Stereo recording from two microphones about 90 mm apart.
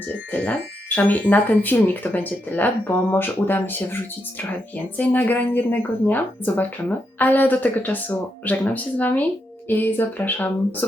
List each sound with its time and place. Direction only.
0.3 s a woman's voice: 15° left (ahead or behind)
4.9 s a woman's voice: 20° left (ahead or behind)